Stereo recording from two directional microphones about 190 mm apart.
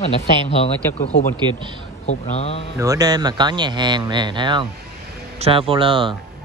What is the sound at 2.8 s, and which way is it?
Speech, 20° right (ahead or behind).